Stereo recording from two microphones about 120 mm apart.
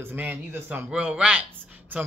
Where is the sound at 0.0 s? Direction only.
15° right (ahead or behind).